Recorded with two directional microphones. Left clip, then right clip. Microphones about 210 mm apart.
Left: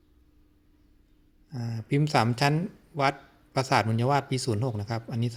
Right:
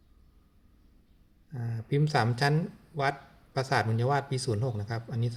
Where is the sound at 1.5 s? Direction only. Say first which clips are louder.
Left 2 dB; 35° left (ahead or behind).